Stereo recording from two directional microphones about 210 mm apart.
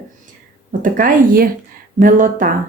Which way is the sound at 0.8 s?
40° right (ahead or behind).